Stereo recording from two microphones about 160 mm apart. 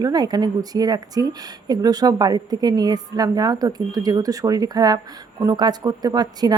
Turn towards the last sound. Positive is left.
turn(degrees=-25)  # may be behind; listen again after turning